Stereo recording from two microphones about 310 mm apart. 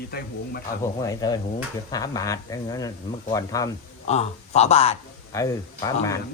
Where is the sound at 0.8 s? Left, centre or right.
Centre.